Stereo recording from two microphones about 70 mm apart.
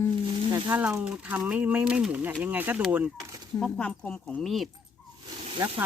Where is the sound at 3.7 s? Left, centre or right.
Centre.